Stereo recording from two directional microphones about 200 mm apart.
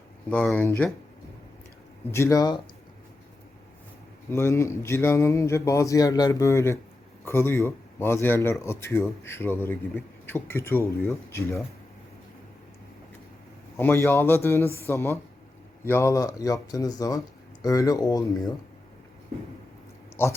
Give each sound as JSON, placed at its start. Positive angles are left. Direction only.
{"t": 0.3, "sound": "speech", "side_deg": 5}
{"t": 2.0, "sound": "speech", "side_deg": 15}
{"t": 4.3, "sound": "speech", "side_deg": 10}
{"t": 13.7, "sound": "speech", "side_deg": 10}
{"t": 20.2, "sound": "speech", "side_deg": 10}